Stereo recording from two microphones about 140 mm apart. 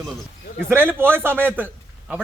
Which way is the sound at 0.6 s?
15° right (ahead or behind).